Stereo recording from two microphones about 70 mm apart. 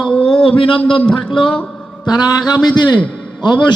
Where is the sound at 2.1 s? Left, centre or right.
Left.